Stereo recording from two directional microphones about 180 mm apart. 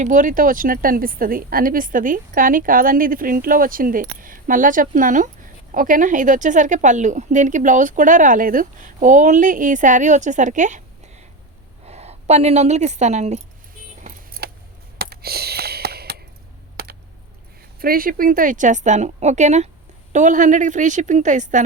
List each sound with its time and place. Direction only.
0.0 s speech: 45° right (ahead or behind)
11.9 s a woman's voice: 35° right (ahead or behind)
14.0 s keys jangling: 55° right (ahead or behind)
14.9 s a sound: 60° right (ahead or behind)
16.7 s computer keyboard: 60° right (ahead or behind)
17.7 s speech: 55° right (ahead or behind)